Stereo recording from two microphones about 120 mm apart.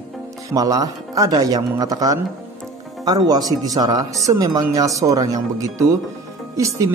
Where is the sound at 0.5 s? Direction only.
30° right (ahead or behind).